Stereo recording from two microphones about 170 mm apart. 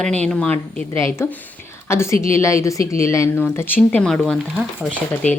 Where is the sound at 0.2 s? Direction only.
5° left (ahead or behind).